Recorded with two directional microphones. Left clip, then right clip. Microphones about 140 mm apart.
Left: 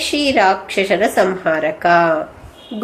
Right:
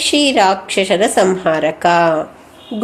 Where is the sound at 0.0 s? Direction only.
35° right (ahead or behind).